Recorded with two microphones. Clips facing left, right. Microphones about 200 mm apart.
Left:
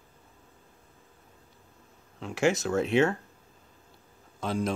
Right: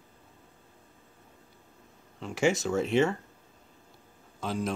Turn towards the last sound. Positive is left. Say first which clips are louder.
# left 2 dB
turn(degrees=-5)  # may be behind; listen again after turning